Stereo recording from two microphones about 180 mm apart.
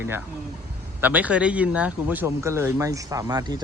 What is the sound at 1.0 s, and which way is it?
Speech, 10° right (ahead or behind).